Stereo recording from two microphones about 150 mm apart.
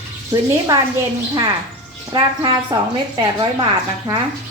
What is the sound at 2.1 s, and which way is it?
Speech, 35° right (ahead or behind).